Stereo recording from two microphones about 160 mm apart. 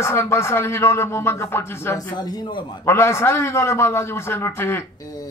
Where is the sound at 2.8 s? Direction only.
15° left (ahead or behind).